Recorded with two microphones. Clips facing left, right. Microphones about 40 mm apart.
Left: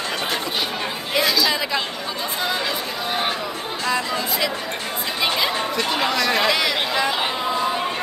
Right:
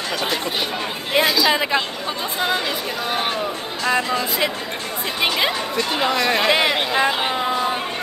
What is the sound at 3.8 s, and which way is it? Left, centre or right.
Speech, right.